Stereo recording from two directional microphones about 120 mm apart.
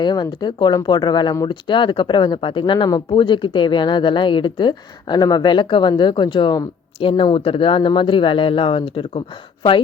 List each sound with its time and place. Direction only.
0.0 s speech: 40° left (ahead or behind)